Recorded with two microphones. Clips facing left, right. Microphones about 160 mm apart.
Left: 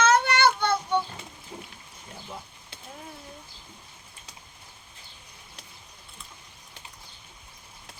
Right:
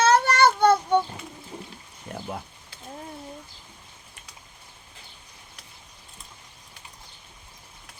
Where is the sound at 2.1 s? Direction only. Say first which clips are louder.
Right 9 dB; 60° right (ahead or behind).